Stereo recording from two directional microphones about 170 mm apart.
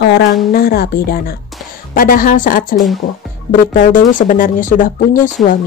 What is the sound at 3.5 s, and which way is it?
Speech, 50° left (ahead or behind).